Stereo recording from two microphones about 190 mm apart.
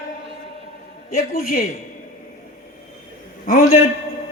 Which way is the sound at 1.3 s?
45° left (ahead or behind).